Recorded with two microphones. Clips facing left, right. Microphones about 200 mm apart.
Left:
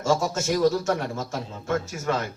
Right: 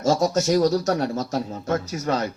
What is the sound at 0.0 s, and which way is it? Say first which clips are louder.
A man's voice: right 4 dB; 40° right (ahead or behind).